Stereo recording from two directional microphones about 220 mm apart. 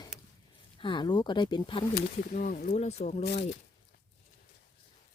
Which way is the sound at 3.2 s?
50° left (ahead or behind).